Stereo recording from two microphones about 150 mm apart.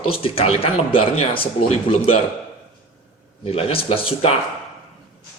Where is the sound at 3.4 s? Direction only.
40° left (ahead or behind).